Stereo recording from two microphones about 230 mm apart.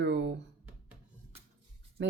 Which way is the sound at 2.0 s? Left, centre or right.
Right.